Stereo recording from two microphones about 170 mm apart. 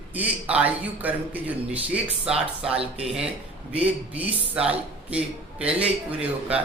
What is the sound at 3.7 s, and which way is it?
A man's voice, 10° right (ahead or behind).